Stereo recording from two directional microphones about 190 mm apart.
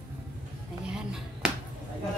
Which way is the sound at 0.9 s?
5° right (ahead or behind).